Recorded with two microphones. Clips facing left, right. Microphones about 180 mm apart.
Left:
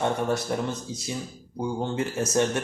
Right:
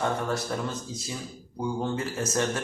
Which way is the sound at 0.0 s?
20° left (ahead or behind).